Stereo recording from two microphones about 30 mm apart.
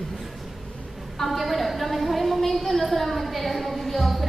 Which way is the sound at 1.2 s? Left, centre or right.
Centre.